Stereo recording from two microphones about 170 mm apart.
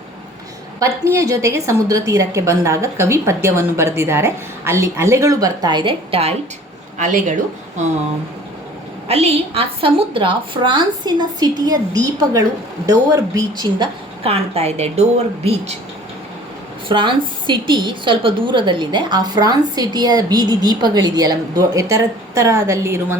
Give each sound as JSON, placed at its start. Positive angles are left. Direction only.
{"t": 0.8, "sound": "a woman's voice", "side_deg": -15}
{"t": 7.0, "sound": "speech", "side_deg": -50}
{"t": 9.0, "sound": "a woman's voice", "side_deg": -35}
{"t": 16.9, "sound": "a woman's voice", "side_deg": -30}